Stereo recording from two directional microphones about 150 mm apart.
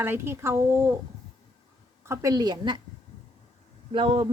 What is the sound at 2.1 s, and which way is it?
Speech, 25° right (ahead or behind).